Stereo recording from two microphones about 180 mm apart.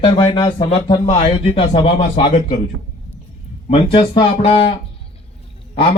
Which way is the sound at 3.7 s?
30° left (ahead or behind).